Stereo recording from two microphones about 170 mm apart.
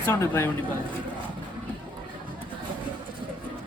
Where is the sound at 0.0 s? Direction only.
15° left (ahead or behind).